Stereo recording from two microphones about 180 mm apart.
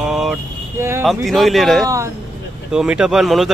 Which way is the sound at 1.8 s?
15° right (ahead or behind).